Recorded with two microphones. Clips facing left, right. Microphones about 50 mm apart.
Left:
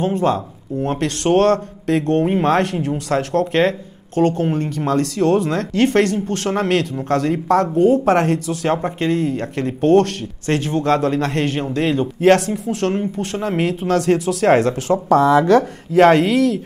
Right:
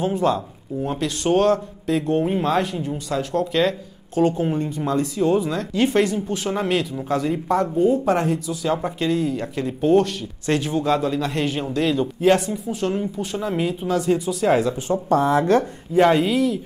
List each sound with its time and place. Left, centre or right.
0.0 s speech: left
0.8 s speech: left
8.8 s speech: left
10.4 s speech: left
11.6 s speech: left
12.2 s speech: left
14.9 s speech: left